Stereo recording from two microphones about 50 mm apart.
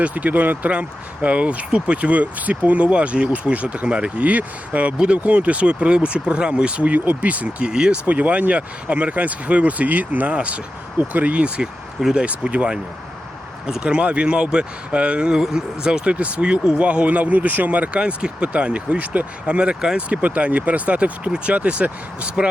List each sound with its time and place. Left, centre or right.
0.0 s speech: right
0.7 s speech: right
7.0 s speech: right
7.3 s speech: right
8.0 s speech: right
13.8 s speech: right
16.1 s speech: right